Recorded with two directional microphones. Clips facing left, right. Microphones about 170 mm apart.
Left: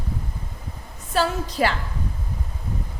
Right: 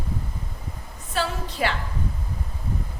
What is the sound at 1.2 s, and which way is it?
Speech, 40° left (ahead or behind).